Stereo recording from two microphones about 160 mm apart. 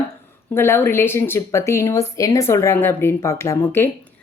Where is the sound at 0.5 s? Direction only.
15° left (ahead or behind).